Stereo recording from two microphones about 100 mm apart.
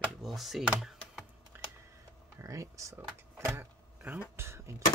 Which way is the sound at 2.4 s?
35° right (ahead or behind).